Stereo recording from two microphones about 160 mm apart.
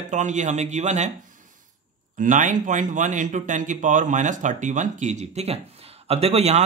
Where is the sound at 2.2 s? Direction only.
50° right (ahead or behind).